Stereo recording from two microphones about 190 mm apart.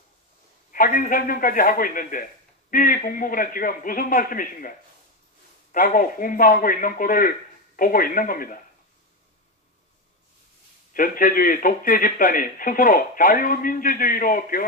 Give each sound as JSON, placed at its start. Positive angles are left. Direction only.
{"t": 0.7, "sound": "a man's voice", "side_deg": 45}
{"t": 10.9, "sound": "a man's voice", "side_deg": 45}